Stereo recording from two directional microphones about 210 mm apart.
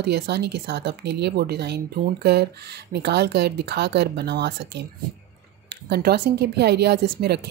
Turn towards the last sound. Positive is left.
turn(degrees=-50)  # may be behind; listen again after turning